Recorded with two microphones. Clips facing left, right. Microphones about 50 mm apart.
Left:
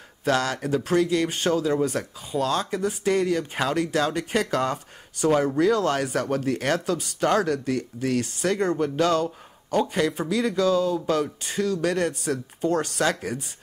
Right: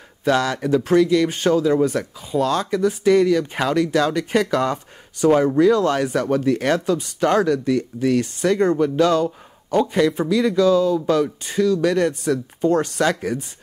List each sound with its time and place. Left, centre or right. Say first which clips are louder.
0.2 s speech: right 4 dB; right
8.7 s speech: right 5 dB; right
10.7 s speech: right 4 dB; left
11.4 s speech: right 6 dB; right